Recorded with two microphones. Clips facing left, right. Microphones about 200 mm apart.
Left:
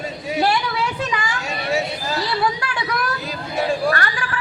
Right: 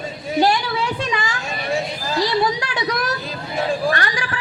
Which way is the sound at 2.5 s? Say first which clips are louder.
Right 2 dB; 20° right (ahead or behind).